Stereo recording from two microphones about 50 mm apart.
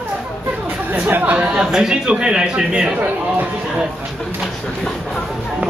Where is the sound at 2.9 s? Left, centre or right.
Right.